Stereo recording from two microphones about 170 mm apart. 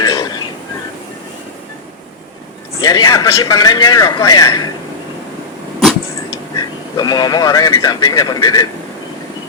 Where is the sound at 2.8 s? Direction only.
20° left (ahead or behind).